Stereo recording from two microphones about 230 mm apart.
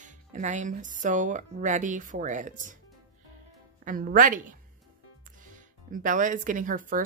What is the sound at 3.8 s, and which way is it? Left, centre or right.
Speech, right.